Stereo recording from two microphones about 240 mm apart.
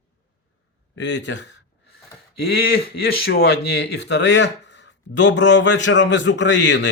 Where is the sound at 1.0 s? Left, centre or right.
Left.